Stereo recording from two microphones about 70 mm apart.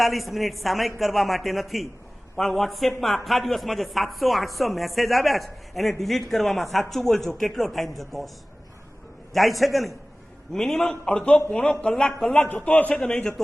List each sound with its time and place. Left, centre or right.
0.0 s a woman's voice: centre
9.3 s a woman's voice: centre
12.5 s a man's voice: left